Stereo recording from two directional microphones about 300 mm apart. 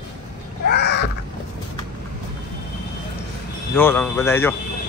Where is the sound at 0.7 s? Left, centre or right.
Left.